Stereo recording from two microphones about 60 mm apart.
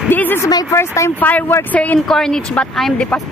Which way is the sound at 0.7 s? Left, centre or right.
Left.